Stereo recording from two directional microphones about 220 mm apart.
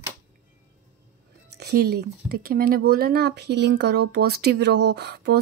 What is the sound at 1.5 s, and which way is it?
Speech, 45° right (ahead or behind).